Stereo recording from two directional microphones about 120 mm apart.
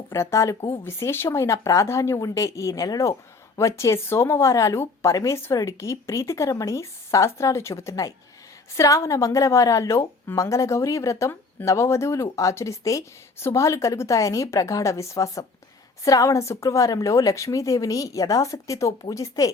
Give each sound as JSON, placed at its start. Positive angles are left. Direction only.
{"t": 0.1, "sound": "speech", "side_deg": 25}